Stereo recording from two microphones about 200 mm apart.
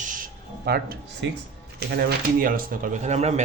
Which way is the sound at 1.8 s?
55° right (ahead or behind).